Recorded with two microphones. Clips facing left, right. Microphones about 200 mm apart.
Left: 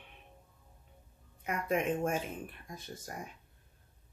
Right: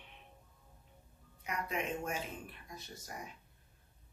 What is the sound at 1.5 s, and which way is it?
Speech, 50° left (ahead or behind).